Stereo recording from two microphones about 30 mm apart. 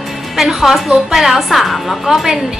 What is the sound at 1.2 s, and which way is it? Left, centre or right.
Speech, centre.